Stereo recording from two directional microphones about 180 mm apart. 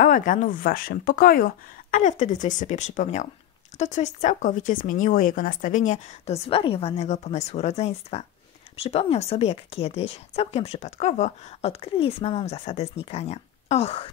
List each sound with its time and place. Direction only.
0.0 s speech: 50° left (ahead or behind); by 14.1 s 30° left (ahead or behind)